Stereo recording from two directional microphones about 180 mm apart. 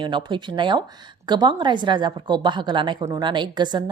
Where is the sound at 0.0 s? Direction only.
25° right (ahead or behind).